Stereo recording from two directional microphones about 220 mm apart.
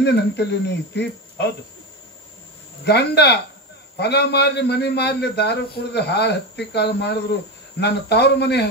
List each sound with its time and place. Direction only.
0.0 s a man's voice: 50° left (ahead or behind)
2.8 s a man's voice: 50° left (ahead or behind)